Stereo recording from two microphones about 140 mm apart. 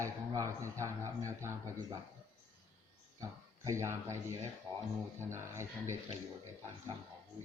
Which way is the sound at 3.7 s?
20° right (ahead or behind).